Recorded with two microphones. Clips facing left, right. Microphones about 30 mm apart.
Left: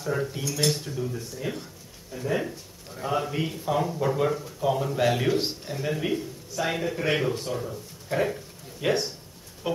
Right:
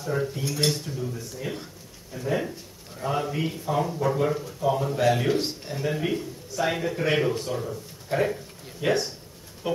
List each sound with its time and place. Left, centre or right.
0.0 s cutlery: centre
0.4 s speech: right
0.8 s a man's voice: centre